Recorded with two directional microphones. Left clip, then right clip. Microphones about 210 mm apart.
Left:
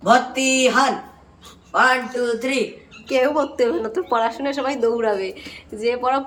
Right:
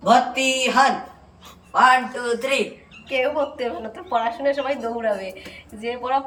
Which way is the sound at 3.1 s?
20° left (ahead or behind).